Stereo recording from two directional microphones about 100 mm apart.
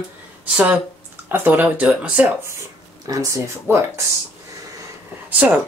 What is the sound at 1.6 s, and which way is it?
Speech, 10° right (ahead or behind).